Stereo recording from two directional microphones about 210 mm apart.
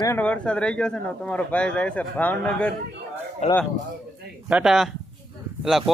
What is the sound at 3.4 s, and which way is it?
Speech, 30° left (ahead or behind).